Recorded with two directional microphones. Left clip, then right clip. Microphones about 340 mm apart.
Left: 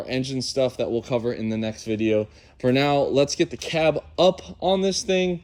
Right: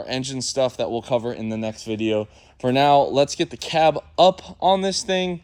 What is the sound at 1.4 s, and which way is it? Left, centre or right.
Speech, centre.